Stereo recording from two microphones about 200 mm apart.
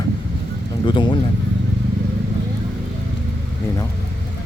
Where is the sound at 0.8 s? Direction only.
25° left (ahead or behind).